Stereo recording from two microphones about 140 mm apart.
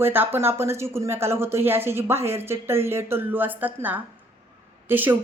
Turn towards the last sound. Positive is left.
turn(degrees=-15)  # may be behind; listen again after turning